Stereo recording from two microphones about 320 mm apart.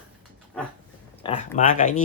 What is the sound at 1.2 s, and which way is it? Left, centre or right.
Speech, centre.